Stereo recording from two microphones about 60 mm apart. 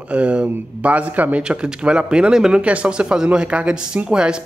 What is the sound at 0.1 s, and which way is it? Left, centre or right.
Speech, centre.